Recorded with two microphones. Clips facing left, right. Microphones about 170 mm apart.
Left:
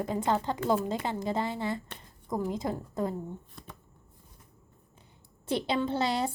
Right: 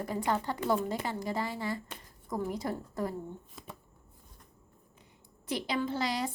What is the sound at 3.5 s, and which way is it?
Shuffling cards, centre (ahead or behind).